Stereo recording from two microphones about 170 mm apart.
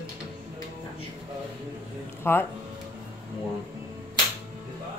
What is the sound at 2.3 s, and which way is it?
Speech, 15° left (ahead or behind).